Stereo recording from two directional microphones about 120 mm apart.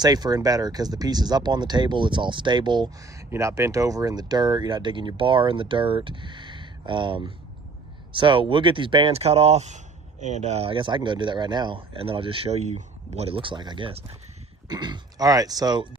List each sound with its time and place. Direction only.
0.0 s speech: 35° right (ahead or behind)
3.2 s speech: 25° right (ahead or behind); by 9.1 s 45° right (ahead or behind)
9.1 s speech: 60° right (ahead or behind); by 15.9 s 35° right (ahead or behind)